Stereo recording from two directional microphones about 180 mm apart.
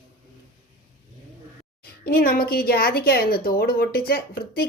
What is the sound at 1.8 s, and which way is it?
Speech, 55° left (ahead or behind).